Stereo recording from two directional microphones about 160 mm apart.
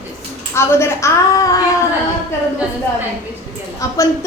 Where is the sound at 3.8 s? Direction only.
20° left (ahead or behind).